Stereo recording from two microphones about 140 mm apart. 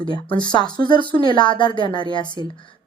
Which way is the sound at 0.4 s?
30° left (ahead or behind).